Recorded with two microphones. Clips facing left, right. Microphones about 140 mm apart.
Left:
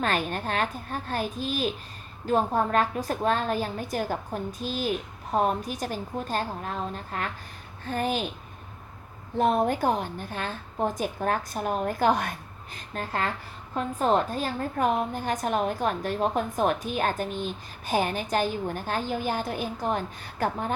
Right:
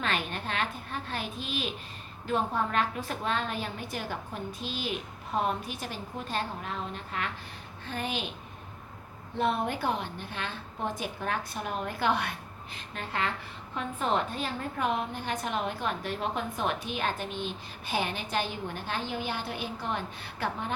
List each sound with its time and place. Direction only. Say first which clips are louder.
0.0 s a woman's voice: left 5 dB; 40° left (ahead or behind)
9.4 s a woman's voice: left 6 dB; 45° left (ahead or behind)